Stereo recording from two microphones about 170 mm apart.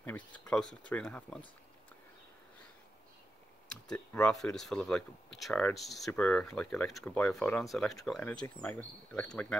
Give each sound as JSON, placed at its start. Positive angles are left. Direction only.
{"t": 0.0, "sound": "speech", "side_deg": 10}
{"t": 3.6, "sound": "speech", "side_deg": 5}